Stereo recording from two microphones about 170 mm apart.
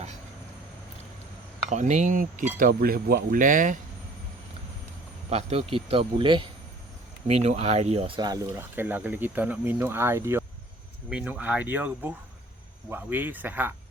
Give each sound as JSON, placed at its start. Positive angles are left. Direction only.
{"t": 1.7, "sound": "speech", "side_deg": -45}
{"t": 5.3, "sound": "speech", "side_deg": -35}
{"t": 8.7, "sound": "speech", "side_deg": -10}